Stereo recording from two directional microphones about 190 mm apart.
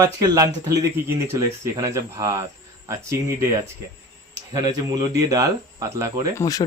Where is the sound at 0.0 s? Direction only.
20° right (ahead or behind).